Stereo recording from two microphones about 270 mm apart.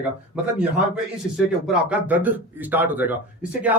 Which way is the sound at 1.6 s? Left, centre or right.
Centre.